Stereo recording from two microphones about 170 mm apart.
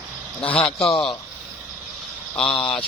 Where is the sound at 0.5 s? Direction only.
5° left (ahead or behind).